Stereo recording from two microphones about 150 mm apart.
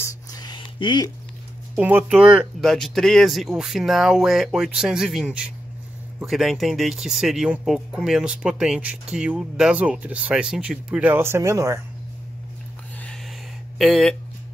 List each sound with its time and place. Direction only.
0.0 s a sound: 25° left (ahead or behind)
1.8 s speech: 10° right (ahead or behind)
2.7 s speech: centre (ahead or behind); by 11.8 s 20° right (ahead or behind)
13.7 s speech: centre (ahead or behind)